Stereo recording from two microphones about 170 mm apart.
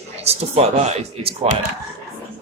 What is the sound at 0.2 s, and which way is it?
Speech, 40° right (ahead or behind).